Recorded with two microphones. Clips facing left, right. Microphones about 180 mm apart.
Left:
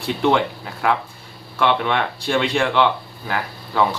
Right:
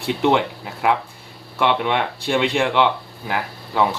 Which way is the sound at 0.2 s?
20° right (ahead or behind).